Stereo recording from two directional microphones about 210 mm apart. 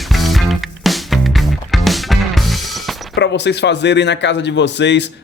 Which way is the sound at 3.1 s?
55° left (ahead or behind).